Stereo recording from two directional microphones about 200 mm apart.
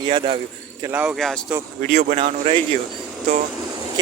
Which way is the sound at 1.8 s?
35° right (ahead or behind).